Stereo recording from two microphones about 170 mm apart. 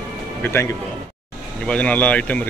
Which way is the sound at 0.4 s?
15° left (ahead or behind).